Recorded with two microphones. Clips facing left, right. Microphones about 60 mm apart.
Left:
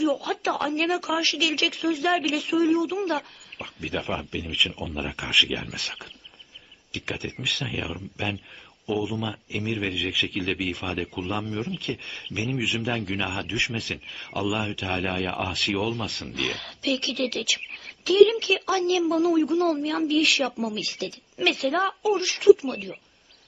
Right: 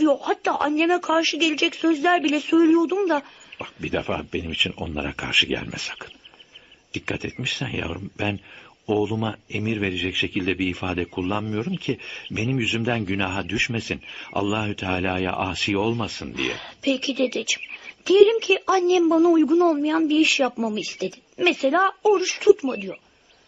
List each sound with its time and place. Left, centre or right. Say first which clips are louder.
0.0 s speech: right 5 dB; centre
7.1 s speech: right 2 dB; centre
12.3 s speech: right 4 dB; centre
12.6 s speech: right 3 dB; centre
16.3 s speech: right 2 dB; centre
17.0 s speech: right 4 dB; centre